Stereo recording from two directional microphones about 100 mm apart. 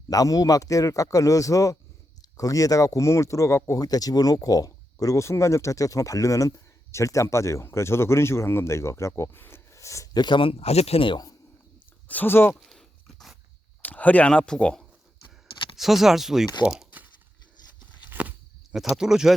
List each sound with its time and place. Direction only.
0.1 s speech: 35° left (ahead or behind)
10.2 s speech: 50° left (ahead or behind); by 11.2 s 70° left (ahead or behind)
12.0 s speech: 15° left (ahead or behind)
12.5 s a sound: centre (ahead or behind)
13.8 s speech: 15° left (ahead or behind)
15.7 s speech: centre (ahead or behind)
16.6 s crumpling: 10° right (ahead or behind)
18.1 s a sound: 15° right (ahead or behind)
18.7 s speech: 5° right (ahead or behind)